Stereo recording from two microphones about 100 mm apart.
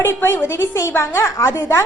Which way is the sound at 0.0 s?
25° left (ahead or behind).